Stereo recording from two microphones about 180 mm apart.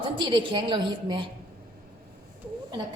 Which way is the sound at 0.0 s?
25° right (ahead or behind).